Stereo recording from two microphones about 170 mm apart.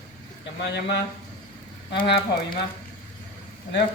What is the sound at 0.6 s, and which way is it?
Speech, 90° left.